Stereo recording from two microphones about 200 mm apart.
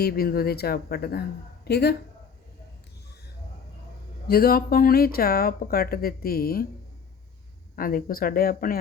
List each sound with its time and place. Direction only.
0.0 s speech: 50° left (ahead or behind)
4.3 s speech: 50° left (ahead or behind)
7.8 s speech: 45° left (ahead or behind)